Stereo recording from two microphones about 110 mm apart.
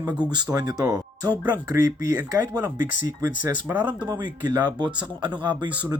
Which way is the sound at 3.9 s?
40° right (ahead or behind).